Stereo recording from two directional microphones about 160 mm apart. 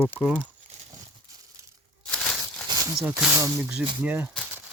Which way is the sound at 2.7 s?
25° right (ahead or behind).